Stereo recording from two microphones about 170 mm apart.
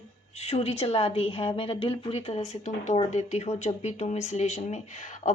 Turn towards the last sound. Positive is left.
turn(degrees=45)  # may be behind; listen again after turning